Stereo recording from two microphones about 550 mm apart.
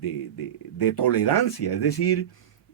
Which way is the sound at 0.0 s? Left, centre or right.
Left.